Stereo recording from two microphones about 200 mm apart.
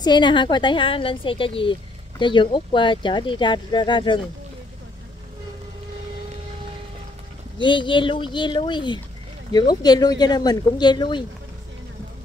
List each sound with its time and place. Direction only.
0.0 s a woman's voice: 20° left (ahead or behind)
7.5 s a woman's voice: 25° left (ahead or behind)